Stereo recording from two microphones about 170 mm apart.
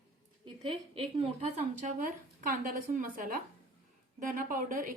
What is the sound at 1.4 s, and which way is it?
A woman's voice, 45° right (ahead or behind).